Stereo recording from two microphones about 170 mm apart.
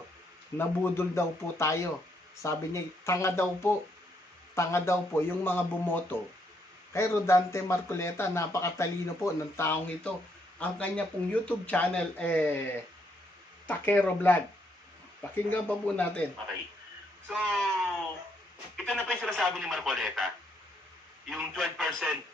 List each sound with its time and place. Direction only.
0.6 s speech: 15° left (ahead or behind)
13.7 s speech: 10° left (ahead or behind)
15.4 s speech: 10° left (ahead or behind)
17.2 s speech: centre (ahead or behind)
18.9 s speech: 5° left (ahead or behind)